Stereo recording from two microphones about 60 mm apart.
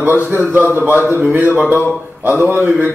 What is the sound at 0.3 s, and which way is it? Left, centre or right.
A man's voice, right.